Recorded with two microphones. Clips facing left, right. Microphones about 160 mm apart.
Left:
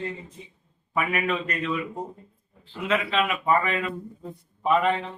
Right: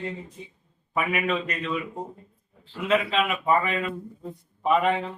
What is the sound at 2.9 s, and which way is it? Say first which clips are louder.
A man's voice: right 1 dB; centre (ahead or behind).